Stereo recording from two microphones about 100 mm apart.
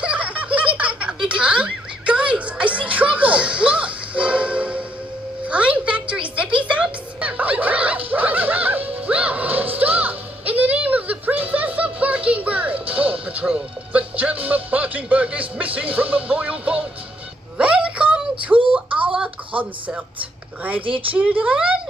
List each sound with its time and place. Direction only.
0.0 s giggle: 15° right (ahead or behind)
0.7 s music: 10° right (ahead or behind)
5.5 s a sound: 10° right (ahead or behind)
12.8 s music: 15° right (ahead or behind)
17.6 s a sound: 10° right (ahead or behind)
20.8 s a woman's voice: 60° right (ahead or behind)
21.2 s speech: 15° right (ahead or behind)